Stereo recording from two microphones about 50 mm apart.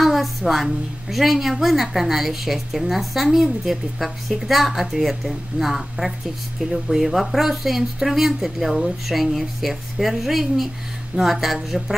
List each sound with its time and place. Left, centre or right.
0.0 s a woman's voice: centre